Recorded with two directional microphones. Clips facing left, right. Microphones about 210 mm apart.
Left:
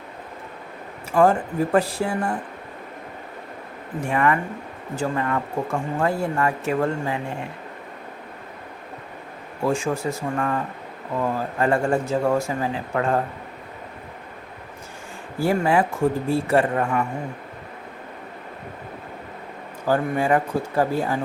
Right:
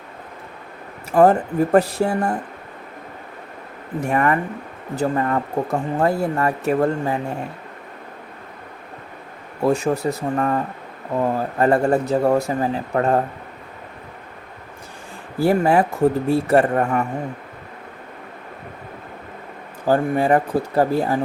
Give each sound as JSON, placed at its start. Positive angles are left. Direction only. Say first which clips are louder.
{"t": 1.1, "sound": "speech", "louder": "right 4 dB", "side_deg": -40}
{"t": 4.0, "sound": "speech", "louder": "right 2 dB", "side_deg": -40}
{"t": 9.6, "sound": "speech", "louder": "right 4 dB", "side_deg": -40}
{"t": 15.4, "sound": "speech", "louder": "right 4 dB", "side_deg": -40}
{"t": 19.9, "sound": "speech", "louder": "right 3 dB", "side_deg": -35}